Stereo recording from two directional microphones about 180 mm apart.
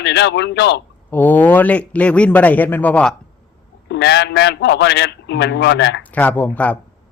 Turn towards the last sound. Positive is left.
turn(degrees=10)  # may be behind; listen again after turning